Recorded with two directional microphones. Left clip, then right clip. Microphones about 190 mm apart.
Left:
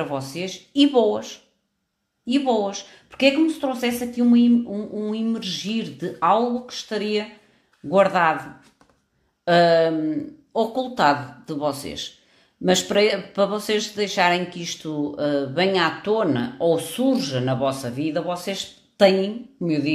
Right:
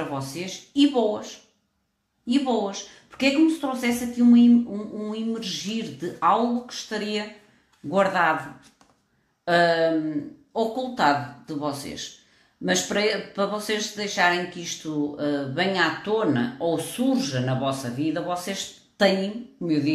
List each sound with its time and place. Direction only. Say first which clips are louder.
0.1 s speech: left 3 dB; 50° left (ahead or behind)
9.4 s speech: left 4 dB; 50° left (ahead or behind)